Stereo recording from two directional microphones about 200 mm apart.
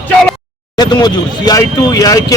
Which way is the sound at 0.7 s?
20° left (ahead or behind).